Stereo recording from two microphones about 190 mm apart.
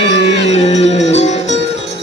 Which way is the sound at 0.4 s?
35° left (ahead or behind).